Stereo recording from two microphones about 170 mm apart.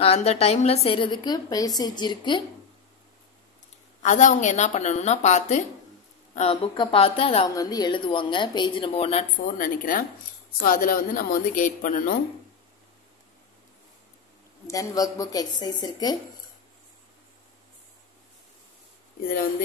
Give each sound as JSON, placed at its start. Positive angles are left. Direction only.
{"t": 0.0, "sound": "a woman's voice", "side_deg": 35}
{"t": 4.0, "sound": "a woman's voice", "side_deg": 45}
{"t": 7.4, "sound": "a woman's voice", "side_deg": 20}
{"t": 9.6, "sound": "a woman's voice", "side_deg": 50}
{"t": 14.7, "sound": "a woman's voice", "side_deg": 20}
{"t": 19.2, "sound": "speech", "side_deg": 60}